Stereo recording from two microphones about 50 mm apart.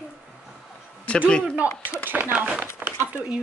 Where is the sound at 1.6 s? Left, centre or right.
Right.